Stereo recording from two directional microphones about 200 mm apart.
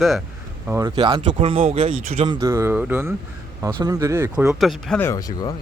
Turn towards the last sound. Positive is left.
turn(degrees=15)  # may be behind; listen again after turning